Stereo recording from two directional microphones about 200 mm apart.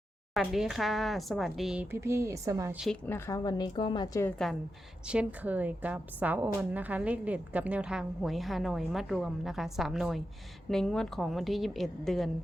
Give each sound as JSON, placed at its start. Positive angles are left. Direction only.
{"t": 0.3, "sound": "a woman's voice", "side_deg": 0}
{"t": 2.7, "sound": "a woman's voice", "side_deg": 0}
{"t": 3.1, "sound": "a woman's voice", "side_deg": 15}
{"t": 5.0, "sound": "a woman's voice", "side_deg": -5}